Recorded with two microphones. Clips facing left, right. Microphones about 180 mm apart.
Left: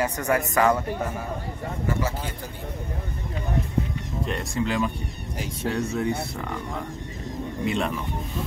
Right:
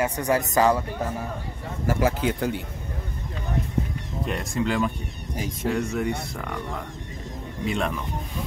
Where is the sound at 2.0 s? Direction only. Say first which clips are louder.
Right 8 dB; 70° right (ahead or behind).